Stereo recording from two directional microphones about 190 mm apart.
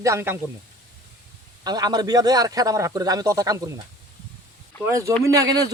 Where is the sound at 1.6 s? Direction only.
20° right (ahead or behind).